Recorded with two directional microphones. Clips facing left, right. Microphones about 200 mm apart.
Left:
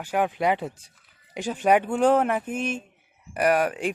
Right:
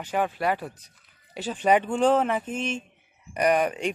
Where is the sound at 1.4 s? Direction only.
10° left (ahead or behind).